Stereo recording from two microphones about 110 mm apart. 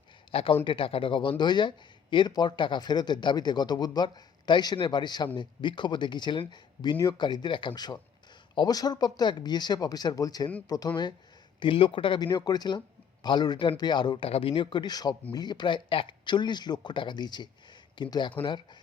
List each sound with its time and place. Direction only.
0.3 s speech: 55° left (ahead or behind)
11.6 s speech: 50° left (ahead or behind)
14.3 s speech: 60° left (ahead or behind); by 18.3 s 45° left (ahead or behind)